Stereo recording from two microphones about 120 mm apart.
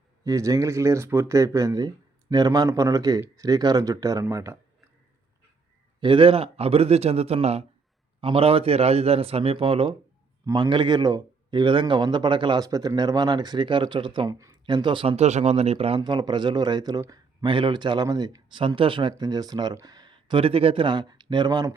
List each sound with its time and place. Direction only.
0.3 s speech: 25° right (ahead or behind)
6.0 s a man's voice: 45° right (ahead or behind)
10.4 s speech: 40° right (ahead or behind)
14.3 s speech: 25° right (ahead or behind)
14.7 s speech: 40° right (ahead or behind)
15.1 s a man's voice: 70° right (ahead or behind)
16.0 s speech: 35° right (ahead or behind)
17.4 s speech: 40° right (ahead or behind)